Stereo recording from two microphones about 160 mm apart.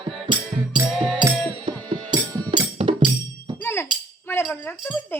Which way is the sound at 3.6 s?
15° left (ahead or behind).